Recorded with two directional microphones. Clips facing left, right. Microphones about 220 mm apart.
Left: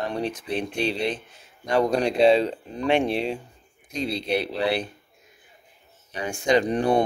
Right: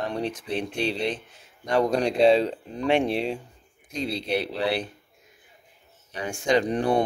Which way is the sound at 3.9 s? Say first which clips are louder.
Left 1 dB; 15° left (ahead or behind).